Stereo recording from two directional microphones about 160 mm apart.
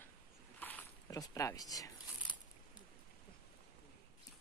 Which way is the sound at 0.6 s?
10° left (ahead or behind).